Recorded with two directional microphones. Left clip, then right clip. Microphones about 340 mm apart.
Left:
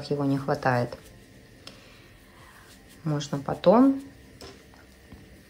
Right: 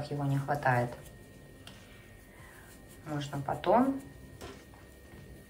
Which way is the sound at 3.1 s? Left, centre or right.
Centre.